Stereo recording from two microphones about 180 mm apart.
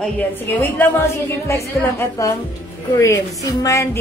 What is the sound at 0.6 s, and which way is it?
A woman's voice, 10° left (ahead or behind).